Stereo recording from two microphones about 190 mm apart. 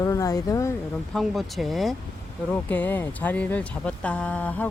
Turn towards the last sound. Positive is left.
turn(degrees=10)  # may be behind; listen again after turning